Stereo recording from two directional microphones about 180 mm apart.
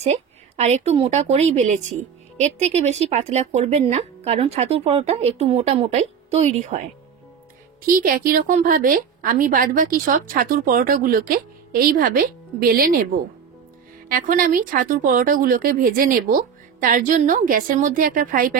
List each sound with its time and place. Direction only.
0.0 s a woman's voice: 40° right (ahead or behind)
7.9 s a woman's voice: 50° right (ahead or behind)
14.0 s a woman's voice: 50° right (ahead or behind)